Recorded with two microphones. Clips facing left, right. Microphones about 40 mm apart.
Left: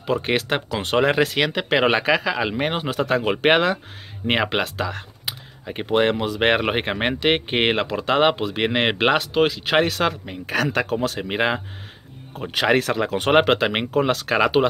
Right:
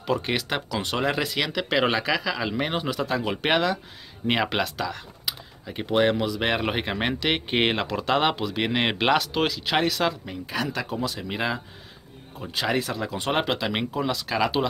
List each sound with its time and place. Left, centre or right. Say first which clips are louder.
0.0 s speech: left 4 dB; left
6.2 s speech: left 5 dB; left
10.4 s speech: left 7 dB; left
12.4 s speech: left 7 dB; left